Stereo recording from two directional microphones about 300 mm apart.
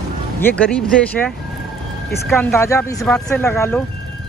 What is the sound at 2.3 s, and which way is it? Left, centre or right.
Speech, centre.